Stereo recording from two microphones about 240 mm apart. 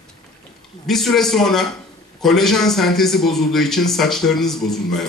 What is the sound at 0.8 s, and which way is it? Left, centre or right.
A man's voice, centre.